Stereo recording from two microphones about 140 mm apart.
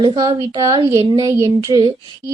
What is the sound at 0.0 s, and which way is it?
A woman's voice, 35° right (ahead or behind).